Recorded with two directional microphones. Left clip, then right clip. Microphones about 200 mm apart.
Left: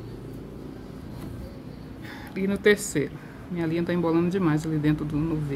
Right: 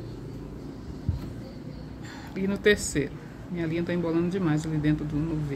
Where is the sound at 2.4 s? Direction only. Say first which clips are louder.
Left 2 dB; 10° left (ahead or behind).